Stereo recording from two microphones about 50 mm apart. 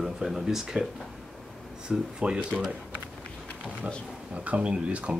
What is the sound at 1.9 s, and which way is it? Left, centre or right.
Speech, centre.